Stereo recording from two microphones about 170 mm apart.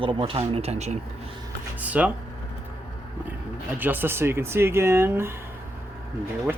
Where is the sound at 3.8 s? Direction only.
10° right (ahead or behind).